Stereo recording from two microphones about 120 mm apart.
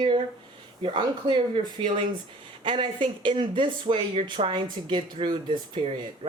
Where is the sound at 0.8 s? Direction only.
45° right (ahead or behind).